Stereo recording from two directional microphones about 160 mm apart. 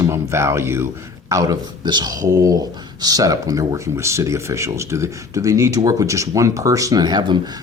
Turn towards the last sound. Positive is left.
turn(degrees=-25)  # may be behind; listen again after turning